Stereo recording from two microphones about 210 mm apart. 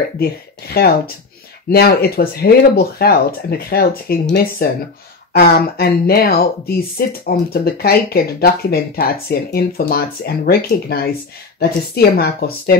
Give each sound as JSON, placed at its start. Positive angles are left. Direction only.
{"t": 0.2, "sound": "speech", "side_deg": 50}